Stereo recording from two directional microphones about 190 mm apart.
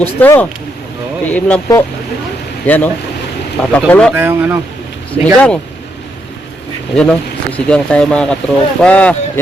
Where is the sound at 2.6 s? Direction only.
10° left (ahead or behind).